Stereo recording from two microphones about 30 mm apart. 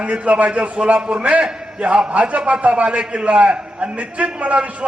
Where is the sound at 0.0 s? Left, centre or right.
Right.